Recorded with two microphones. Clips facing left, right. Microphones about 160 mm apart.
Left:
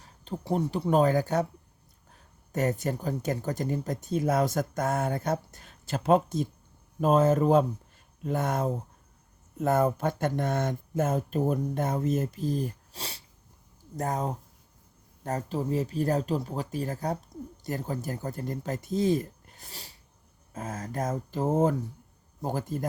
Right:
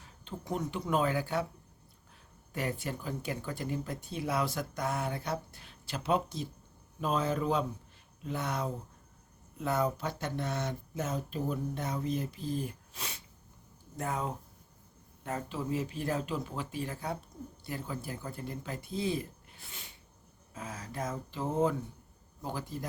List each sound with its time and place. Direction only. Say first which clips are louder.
0.0 s speech: left 6 dB; 35° left (ahead or behind)
2.5 s speech: left 7 dB; 45° left (ahead or behind)